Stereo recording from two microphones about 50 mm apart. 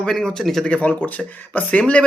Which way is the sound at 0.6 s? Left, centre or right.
Left.